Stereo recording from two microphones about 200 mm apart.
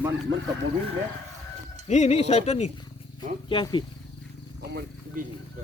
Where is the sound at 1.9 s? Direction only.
35° left (ahead or behind).